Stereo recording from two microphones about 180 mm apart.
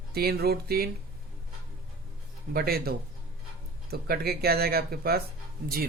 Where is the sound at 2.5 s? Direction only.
60° right (ahead or behind).